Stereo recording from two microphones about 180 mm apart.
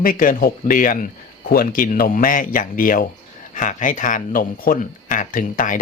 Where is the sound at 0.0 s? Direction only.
50° left (ahead or behind).